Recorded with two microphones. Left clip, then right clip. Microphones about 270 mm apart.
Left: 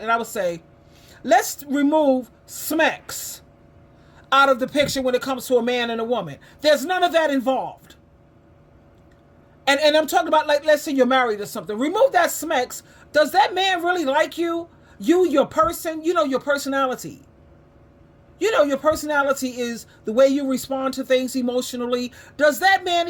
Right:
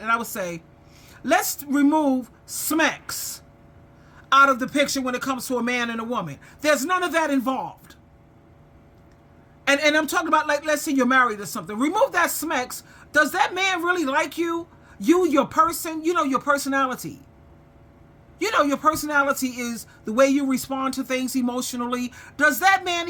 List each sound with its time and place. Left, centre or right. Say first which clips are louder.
0.2 s speech: left 5 dB; centre
6.2 s a man's voice: left 2 dB; right
7.1 s speech: left 3 dB; centre
9.6 s speech: left 3 dB; centre
18.3 s speech: left 3 dB; centre